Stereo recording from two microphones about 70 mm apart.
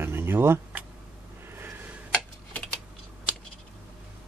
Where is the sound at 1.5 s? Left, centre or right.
Right.